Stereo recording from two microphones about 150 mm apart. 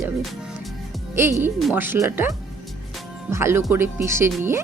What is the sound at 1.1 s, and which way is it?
Speech, 15° right (ahead or behind).